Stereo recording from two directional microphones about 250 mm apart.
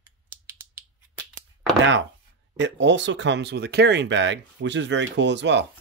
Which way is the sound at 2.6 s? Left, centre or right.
Right.